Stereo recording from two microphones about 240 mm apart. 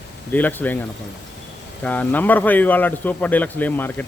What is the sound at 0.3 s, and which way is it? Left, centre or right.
A man's voice, centre.